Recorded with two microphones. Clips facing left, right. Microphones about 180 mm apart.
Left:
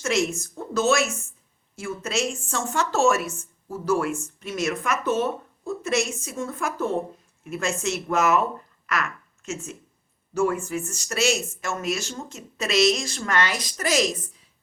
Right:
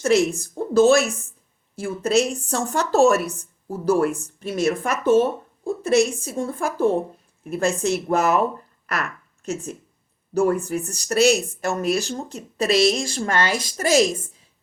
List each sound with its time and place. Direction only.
0.0 s a woman's voice: 35° right (ahead or behind)